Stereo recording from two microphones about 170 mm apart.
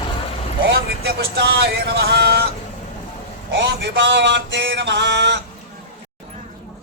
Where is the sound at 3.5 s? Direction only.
85° right.